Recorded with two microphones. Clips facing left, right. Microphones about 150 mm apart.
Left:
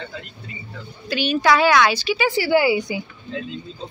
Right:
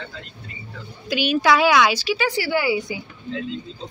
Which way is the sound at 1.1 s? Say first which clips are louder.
Even; 10° right (ahead or behind).